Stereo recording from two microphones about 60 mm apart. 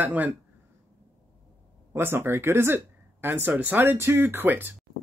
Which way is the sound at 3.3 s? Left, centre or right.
Right.